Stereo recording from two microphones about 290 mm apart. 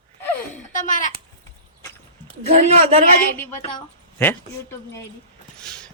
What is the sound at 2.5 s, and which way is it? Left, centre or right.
Speech, right.